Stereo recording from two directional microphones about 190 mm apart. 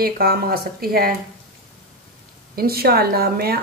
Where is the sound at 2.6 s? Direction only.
55° right (ahead or behind).